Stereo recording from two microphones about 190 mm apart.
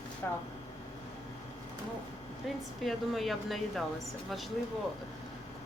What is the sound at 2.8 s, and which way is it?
Speech, centre (ahead or behind).